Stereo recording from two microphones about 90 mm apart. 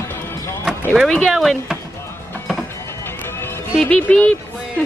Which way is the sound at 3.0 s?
25° left (ahead or behind).